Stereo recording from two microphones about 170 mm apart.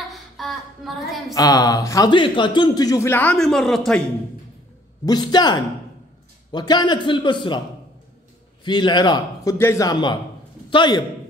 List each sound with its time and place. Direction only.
0.1 s a sound: centre (ahead or behind)
1.3 s speech: 20° left (ahead or behind); by 4.0 s centre (ahead or behind)
5.0 s speech: 25° left (ahead or behind)
8.6 s speech: 25° left (ahead or behind)